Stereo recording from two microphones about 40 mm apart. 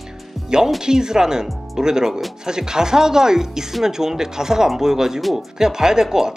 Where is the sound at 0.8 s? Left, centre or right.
Centre.